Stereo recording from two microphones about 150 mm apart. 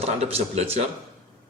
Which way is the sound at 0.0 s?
40° right (ahead or behind).